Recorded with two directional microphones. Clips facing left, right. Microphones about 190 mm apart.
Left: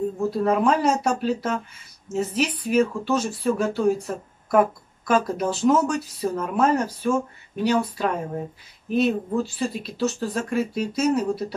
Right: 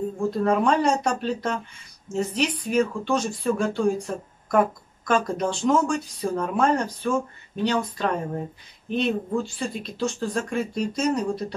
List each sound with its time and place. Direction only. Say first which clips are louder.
0.2 s speech: even; 5° left (ahead or behind)